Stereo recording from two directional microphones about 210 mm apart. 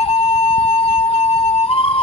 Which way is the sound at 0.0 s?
25° left (ahead or behind).